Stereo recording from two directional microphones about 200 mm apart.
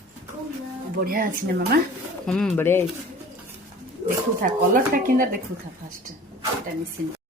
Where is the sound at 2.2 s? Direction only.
5° left (ahead or behind).